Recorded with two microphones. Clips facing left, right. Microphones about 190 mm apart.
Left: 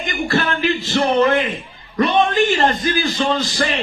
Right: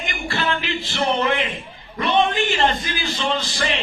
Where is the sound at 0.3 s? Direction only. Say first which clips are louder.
Left 5 dB; 45° left (ahead or behind).